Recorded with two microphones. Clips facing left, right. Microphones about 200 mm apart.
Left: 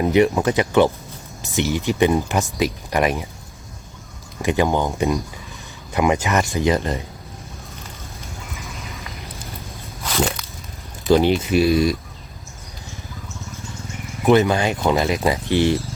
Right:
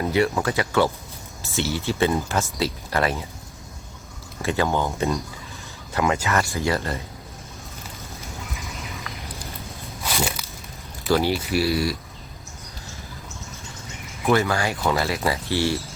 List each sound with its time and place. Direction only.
0.0 s speech: 20° left (ahead or behind)
4.4 s speech: 15° left (ahead or behind)
10.0 s a sound: 5° right (ahead or behind)
11.1 s speech: 20° left (ahead or behind)
14.3 s speech: 20° left (ahead or behind)